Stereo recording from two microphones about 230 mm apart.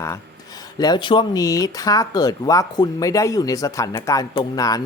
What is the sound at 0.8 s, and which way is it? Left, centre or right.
Speech, centre.